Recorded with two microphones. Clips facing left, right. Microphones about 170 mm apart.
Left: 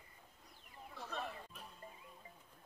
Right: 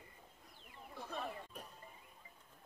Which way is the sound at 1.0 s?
10° right (ahead or behind).